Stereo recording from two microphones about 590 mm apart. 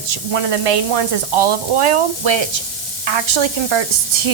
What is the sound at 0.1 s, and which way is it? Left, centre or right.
Speech, right.